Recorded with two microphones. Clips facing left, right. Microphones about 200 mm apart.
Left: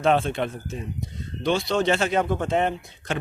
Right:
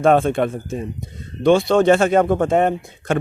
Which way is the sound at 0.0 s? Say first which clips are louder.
Right 6 dB; 50° right (ahead or behind).